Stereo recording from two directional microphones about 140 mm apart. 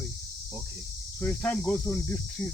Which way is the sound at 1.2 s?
15° left (ahead or behind).